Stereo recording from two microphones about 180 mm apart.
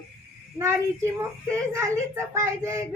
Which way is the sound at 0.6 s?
15° right (ahead or behind).